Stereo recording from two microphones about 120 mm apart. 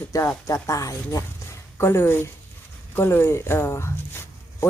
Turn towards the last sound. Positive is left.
turn(degrees=20)  # may be behind; listen again after turning